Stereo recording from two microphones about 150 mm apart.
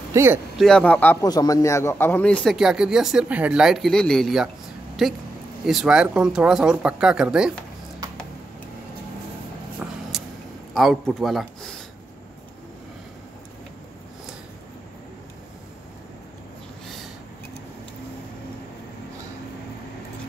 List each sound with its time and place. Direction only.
0.1 s a man's voice: 15° right (ahead or behind)
0.6 s speech: 5° left (ahead or behind)
1.2 s a man's voice: 25° left (ahead or behind)
2.4 s speech: centre (ahead or behind)
10.1 s a sound: centre (ahead or behind)
10.7 s speech: centre (ahead or behind)
16.8 s a sound: centre (ahead or behind)